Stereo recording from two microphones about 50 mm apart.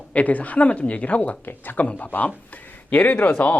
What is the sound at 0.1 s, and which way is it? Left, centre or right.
Speech, left.